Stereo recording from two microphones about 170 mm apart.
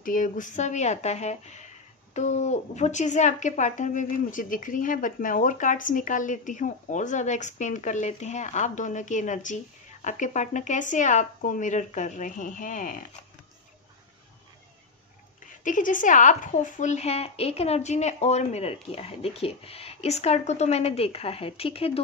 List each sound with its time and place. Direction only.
0.0 s speech: 50° left (ahead or behind)
15.4 s speech: 50° left (ahead or behind); by 22.0 s 35° left (ahead or behind)